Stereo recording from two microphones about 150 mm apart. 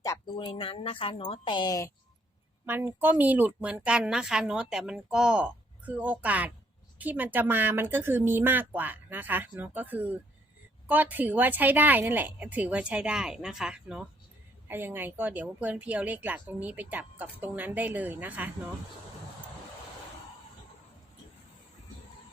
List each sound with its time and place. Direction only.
0.0 s a sound: 20° left (ahead or behind)
0.3 s a woman's voice: 35° left (ahead or behind)
2.6 s speech: 15° right (ahead or behind)